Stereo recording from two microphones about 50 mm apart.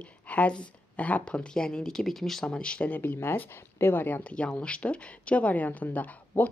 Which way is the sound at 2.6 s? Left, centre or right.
Centre.